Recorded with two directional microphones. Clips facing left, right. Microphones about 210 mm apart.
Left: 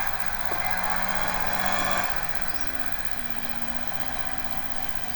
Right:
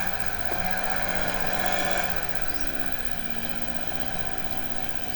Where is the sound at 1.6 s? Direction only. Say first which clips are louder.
Right 1 dB; 30° right (ahead or behind).